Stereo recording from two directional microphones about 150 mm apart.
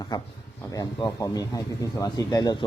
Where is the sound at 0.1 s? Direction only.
30° left (ahead or behind).